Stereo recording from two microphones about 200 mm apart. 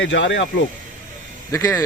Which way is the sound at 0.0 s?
65° left (ahead or behind).